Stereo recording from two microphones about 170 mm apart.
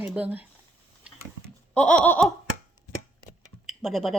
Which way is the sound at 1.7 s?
5° left (ahead or behind).